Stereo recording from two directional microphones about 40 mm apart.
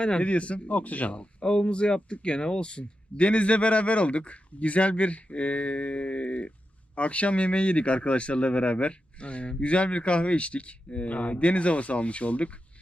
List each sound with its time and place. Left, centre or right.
0.0 s speech: left
1.4 s speech: left